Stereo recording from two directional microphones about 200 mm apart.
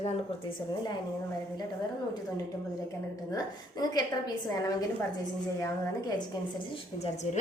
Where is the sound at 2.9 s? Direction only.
15° left (ahead or behind).